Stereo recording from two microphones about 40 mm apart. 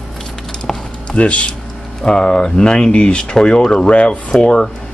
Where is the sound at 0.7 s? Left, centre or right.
Centre.